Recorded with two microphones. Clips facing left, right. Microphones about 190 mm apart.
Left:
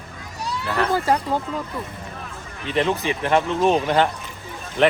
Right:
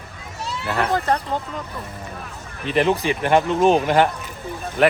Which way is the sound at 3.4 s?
15° right (ahead or behind).